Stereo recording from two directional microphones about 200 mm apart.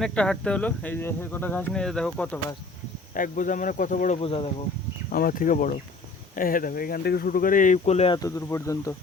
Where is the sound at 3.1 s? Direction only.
40° left (ahead or behind).